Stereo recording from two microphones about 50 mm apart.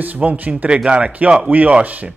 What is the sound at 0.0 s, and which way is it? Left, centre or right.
Speech, right.